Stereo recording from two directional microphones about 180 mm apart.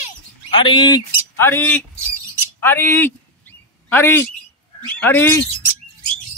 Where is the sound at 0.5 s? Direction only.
25° left (ahead or behind).